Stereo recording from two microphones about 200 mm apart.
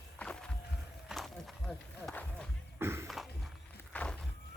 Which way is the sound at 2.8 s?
10° right (ahead or behind).